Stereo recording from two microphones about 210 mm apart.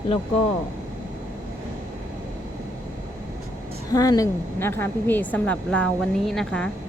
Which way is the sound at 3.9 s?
15° left (ahead or behind).